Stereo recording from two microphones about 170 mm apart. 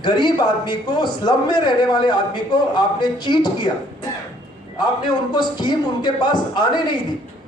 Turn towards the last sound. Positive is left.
turn(degrees=25)  # may be behind; listen again after turning